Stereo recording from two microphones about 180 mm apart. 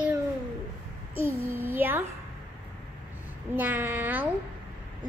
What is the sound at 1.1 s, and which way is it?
Speech, 10° right (ahead or behind).